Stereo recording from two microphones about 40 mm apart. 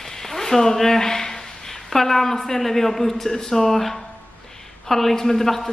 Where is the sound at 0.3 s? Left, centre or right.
Centre.